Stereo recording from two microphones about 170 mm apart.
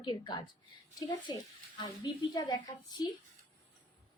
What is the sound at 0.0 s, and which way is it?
A woman's voice, 25° left (ahead or behind).